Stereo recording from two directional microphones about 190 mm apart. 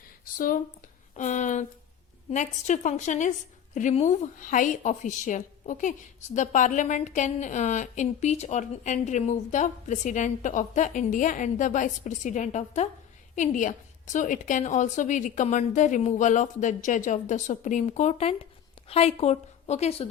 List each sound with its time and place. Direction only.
0.3 s a woman's voice: 45° left (ahead or behind)